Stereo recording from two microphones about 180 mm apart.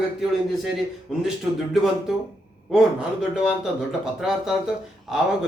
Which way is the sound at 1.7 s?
Centre (ahead or behind).